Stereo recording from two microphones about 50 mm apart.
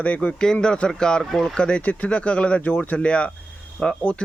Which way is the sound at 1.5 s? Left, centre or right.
Left.